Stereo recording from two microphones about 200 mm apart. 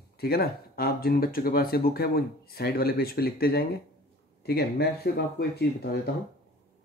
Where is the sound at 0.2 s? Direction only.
50° left (ahead or behind).